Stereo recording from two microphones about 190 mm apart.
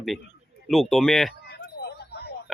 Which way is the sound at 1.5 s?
60° left (ahead or behind).